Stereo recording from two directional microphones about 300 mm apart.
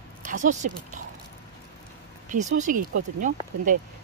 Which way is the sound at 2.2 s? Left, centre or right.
Right.